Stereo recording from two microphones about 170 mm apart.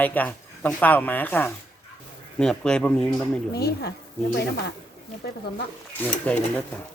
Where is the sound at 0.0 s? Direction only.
10° left (ahead or behind).